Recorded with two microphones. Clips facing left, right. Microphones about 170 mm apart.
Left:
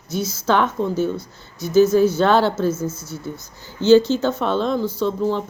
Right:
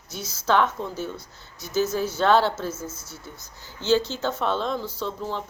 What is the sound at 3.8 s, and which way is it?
Speech, 65° left (ahead or behind).